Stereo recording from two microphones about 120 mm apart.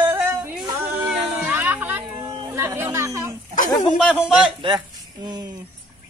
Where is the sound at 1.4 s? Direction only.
15° right (ahead or behind).